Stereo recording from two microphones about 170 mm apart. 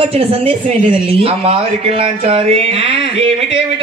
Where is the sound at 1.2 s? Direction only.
35° right (ahead or behind).